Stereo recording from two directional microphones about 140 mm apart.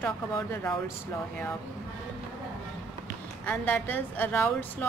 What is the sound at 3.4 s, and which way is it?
A woman's voice, 10° left (ahead or behind).